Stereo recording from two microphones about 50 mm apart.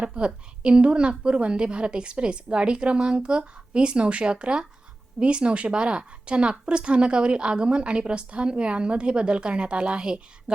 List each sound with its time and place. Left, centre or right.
0.0 s a woman's voice: right